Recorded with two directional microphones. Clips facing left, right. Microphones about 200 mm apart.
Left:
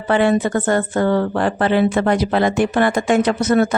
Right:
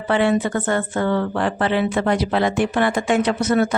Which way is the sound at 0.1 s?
45° left (ahead or behind).